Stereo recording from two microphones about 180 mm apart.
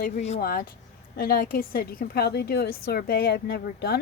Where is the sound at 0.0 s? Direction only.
40° left (ahead or behind).